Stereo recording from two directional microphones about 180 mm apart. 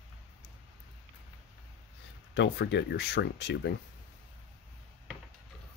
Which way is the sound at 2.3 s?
75° left (ahead or behind).